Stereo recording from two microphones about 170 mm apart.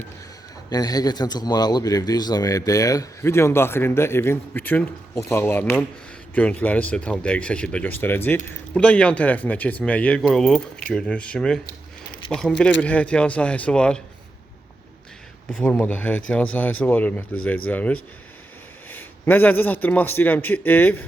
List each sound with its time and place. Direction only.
0.7 s a man's voice: 20° left (ahead or behind); by 14.0 s 5° left (ahead or behind)
15.4 s speech: 5° left (ahead or behind)